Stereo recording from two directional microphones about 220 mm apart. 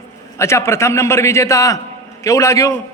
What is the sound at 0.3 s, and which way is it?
A man's voice, 10° left (ahead or behind).